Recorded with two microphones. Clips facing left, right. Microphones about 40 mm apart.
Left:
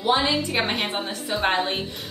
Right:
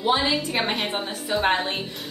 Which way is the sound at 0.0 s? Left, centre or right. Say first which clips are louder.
Left 1 dB; centre.